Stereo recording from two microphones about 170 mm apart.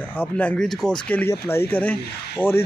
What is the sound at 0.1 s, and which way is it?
Speech, 10° left (ahead or behind).